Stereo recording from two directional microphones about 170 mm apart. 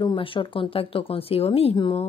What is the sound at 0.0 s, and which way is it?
Speech, 30° left (ahead or behind).